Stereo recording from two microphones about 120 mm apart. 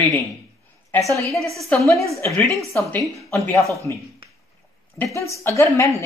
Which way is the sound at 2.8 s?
15° left (ahead or behind).